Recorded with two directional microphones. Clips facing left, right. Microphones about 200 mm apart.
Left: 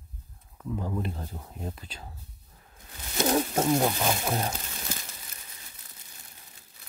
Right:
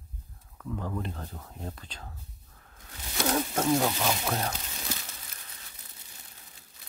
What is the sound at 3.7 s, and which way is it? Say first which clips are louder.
Speech: left 1 dB; 15° left (ahead or behind).